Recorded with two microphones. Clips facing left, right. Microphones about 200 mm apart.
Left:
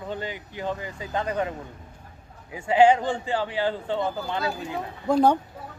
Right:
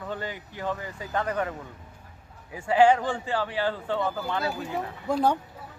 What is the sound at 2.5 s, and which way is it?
Speech, 20° left (ahead or behind).